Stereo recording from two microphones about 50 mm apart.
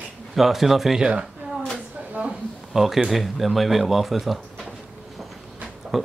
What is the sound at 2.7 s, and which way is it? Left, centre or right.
Speech, centre.